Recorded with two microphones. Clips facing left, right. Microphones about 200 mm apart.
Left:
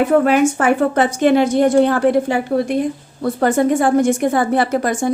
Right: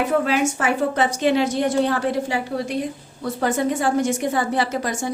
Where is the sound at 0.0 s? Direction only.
55° left (ahead or behind).